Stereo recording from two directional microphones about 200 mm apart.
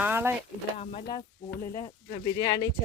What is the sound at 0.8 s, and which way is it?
Speech, 25° left (ahead or behind).